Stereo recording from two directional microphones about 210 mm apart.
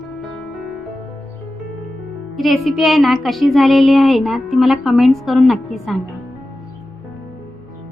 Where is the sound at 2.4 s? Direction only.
Centre (ahead or behind).